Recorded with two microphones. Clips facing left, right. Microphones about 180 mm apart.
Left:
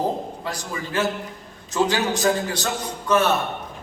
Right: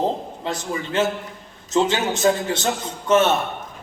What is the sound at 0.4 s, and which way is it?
A man's voice, 25° right (ahead or behind).